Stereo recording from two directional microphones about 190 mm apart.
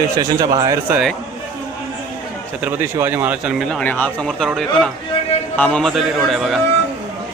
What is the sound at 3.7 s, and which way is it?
Speech, 10° left (ahead or behind).